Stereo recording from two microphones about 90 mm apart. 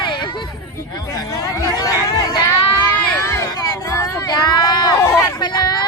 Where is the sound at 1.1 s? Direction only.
35° left (ahead or behind).